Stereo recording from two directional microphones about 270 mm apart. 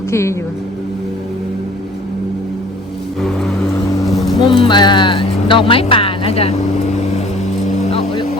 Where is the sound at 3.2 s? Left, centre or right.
Centre.